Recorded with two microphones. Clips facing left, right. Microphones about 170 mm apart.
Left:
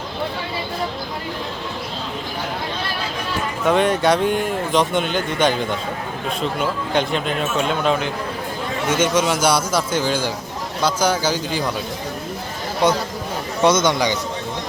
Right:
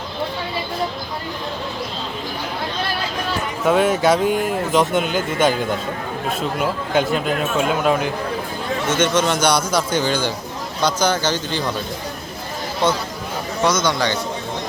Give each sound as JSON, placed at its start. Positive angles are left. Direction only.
{"t": 3.6, "sound": "speech", "side_deg": -5}
{"t": 8.9, "sound": "a man's voice", "side_deg": 10}
{"t": 13.7, "sound": "speech", "side_deg": 25}